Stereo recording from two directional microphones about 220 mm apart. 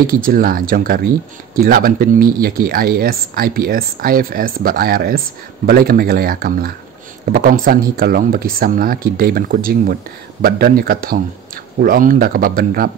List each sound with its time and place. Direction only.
0.0 s speech: 40° right (ahead or behind)